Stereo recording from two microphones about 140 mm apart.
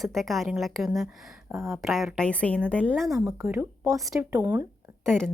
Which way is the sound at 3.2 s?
15° right (ahead or behind).